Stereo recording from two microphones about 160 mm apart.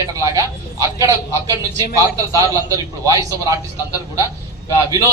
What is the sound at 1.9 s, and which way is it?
A man's voice, 20° right (ahead or behind).